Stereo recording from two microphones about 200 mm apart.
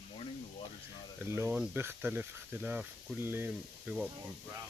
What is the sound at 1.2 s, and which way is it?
Speech, 10° right (ahead or behind).